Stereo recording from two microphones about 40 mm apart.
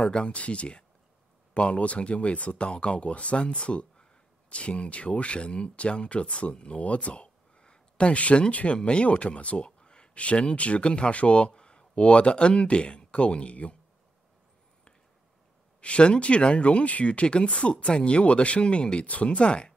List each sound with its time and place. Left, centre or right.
0.0 s speech: left
15.8 s speech: left